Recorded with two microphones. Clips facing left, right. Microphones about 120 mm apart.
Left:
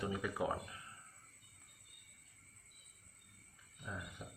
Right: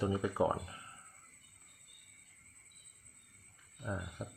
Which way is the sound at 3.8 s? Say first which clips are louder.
Right 7 dB; 40° right (ahead or behind).